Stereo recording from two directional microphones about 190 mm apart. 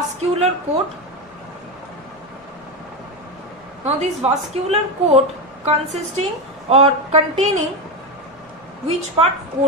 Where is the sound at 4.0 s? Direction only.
35° right (ahead or behind).